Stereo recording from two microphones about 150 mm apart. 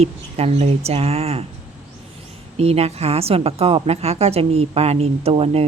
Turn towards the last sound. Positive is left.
turn(degrees=-40)  # may be behind; listen again after turning